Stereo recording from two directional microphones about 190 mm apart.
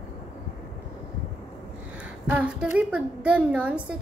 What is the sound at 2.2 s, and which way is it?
A woman's voice, 5° right (ahead or behind).